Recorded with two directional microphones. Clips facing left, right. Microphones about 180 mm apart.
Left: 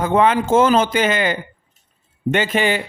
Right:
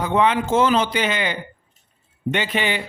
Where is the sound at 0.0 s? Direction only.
45° left (ahead or behind).